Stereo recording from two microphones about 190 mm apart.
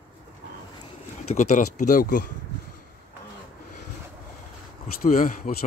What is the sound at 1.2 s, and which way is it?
Speech, 40° left (ahead or behind).